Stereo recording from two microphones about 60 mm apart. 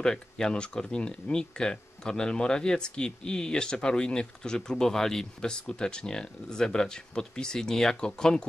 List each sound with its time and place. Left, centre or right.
0.0 s speech: centre